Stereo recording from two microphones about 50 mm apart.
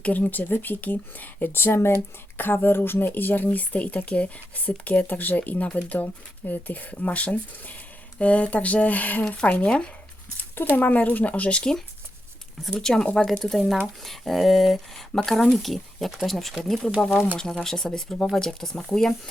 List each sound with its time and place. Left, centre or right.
0.0 s speech: left
1.5 s speech: left
10.8 s speech: left
12.7 s speech: centre